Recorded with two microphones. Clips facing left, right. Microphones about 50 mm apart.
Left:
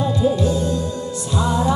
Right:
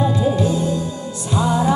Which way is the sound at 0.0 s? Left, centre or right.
Centre.